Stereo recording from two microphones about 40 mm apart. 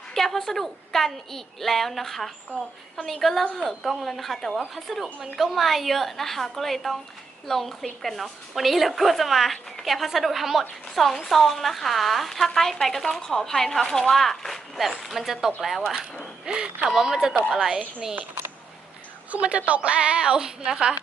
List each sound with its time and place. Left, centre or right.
0.1 s a woman's voice: centre
16.0 s a woman's voice: centre
16.5 s a woman's voice: right
17.0 s a woman's voice: centre
19.3 s a woman's voice: right; by 20.9 s centre